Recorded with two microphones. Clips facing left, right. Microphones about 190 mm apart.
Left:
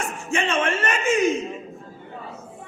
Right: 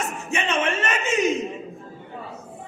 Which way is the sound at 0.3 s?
20° right (ahead or behind).